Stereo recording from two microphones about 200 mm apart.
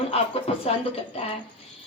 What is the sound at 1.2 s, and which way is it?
Speech, 30° left (ahead or behind).